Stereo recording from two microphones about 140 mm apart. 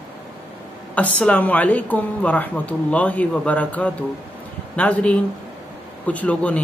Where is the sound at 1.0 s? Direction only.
10° left (ahead or behind).